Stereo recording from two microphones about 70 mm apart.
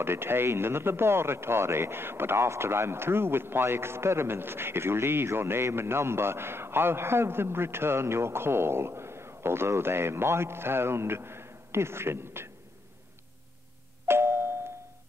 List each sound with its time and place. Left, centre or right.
0.0 s speech: right
14.0 s doorbell: right